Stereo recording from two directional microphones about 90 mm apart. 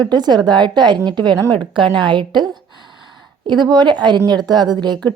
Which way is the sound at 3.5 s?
50° right (ahead or behind).